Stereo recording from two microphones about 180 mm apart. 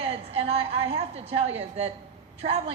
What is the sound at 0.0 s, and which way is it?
A woman's voice, 35° right (ahead or behind).